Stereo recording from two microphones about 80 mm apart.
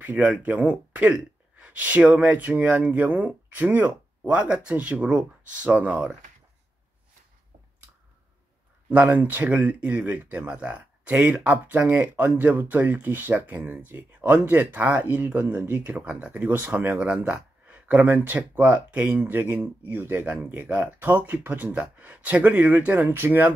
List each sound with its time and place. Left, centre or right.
0.0 s speech: centre
8.9 s speech: right